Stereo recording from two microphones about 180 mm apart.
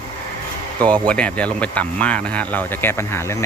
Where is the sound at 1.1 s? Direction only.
5° left (ahead or behind).